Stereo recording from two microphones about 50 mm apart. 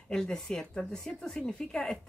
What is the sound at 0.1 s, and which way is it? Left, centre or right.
Speech, centre.